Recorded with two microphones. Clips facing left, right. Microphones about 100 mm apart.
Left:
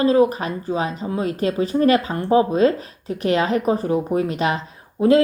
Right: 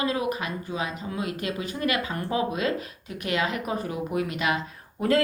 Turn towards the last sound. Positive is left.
turn(degrees=20)  # may be behind; listen again after turning